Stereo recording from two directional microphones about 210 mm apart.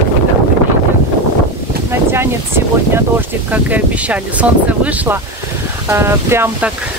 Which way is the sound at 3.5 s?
5° right (ahead or behind).